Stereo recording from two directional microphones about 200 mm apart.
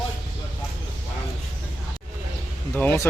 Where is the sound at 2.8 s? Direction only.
10° left (ahead or behind).